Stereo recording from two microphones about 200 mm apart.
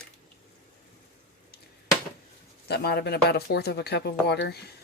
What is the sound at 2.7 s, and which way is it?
Speech, 55° left (ahead or behind).